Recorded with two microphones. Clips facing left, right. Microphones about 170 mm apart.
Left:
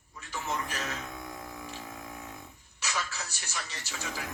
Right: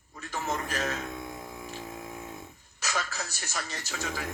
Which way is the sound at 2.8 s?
45° right (ahead or behind).